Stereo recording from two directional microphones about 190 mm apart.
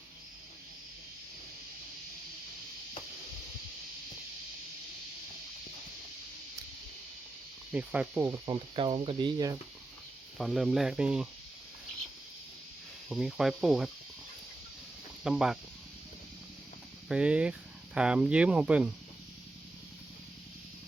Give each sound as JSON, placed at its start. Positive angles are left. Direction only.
{"t": 7.7, "sound": "speech", "side_deg": -5}
{"t": 8.4, "sound": "speech", "side_deg": -30}
{"t": 10.3, "sound": "speech", "side_deg": 0}
{"t": 13.1, "sound": "speech", "side_deg": 0}
{"t": 15.2, "sound": "speech", "side_deg": -5}
{"t": 17.1, "sound": "speech", "side_deg": -5}